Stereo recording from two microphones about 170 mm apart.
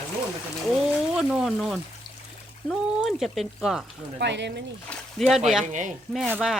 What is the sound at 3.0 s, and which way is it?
Speech, centre (ahead or behind).